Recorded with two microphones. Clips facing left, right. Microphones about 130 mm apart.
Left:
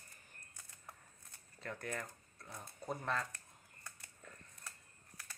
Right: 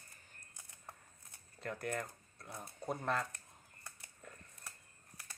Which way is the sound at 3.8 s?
10° right (ahead or behind).